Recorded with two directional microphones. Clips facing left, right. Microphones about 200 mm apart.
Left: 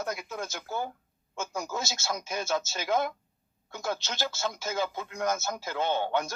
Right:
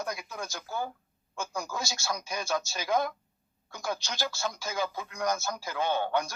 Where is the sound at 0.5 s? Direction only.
20° left (ahead or behind).